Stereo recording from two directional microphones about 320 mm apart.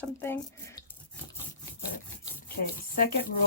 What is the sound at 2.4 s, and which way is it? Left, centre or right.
Speech, left.